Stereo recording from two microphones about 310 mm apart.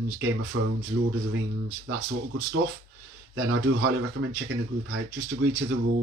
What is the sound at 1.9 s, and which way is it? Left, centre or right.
Speech, right.